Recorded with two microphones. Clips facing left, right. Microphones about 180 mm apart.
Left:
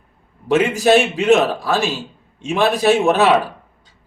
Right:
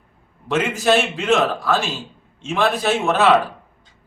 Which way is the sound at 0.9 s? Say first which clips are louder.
Left 5 dB; 15° left (ahead or behind).